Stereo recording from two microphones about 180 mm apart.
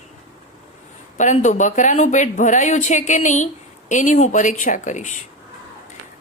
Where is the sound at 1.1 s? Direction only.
40° left (ahead or behind).